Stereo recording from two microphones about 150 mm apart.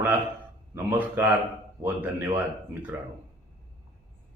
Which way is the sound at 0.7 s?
15° right (ahead or behind).